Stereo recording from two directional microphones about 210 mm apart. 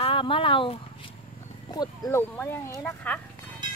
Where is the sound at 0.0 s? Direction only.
25° left (ahead or behind).